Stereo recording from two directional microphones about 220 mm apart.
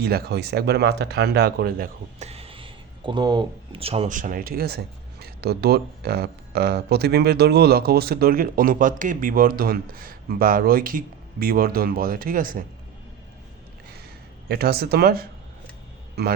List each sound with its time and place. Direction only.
0.0 s speech: 45° right (ahead or behind)
2.1 s speech: 30° right (ahead or behind)
14.4 s speech: 45° right (ahead or behind)